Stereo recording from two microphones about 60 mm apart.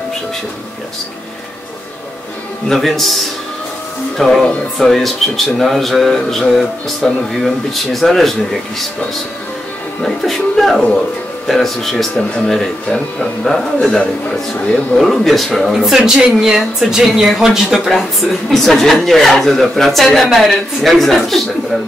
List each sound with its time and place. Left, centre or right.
2.7 s speech: centre
4.2 s speech: centre
10.0 s speech: centre